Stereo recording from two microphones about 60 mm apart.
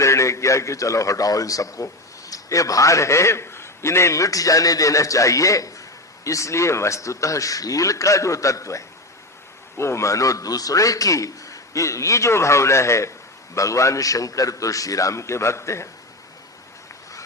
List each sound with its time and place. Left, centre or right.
0.0 s a man's voice: left
9.7 s a man's voice: left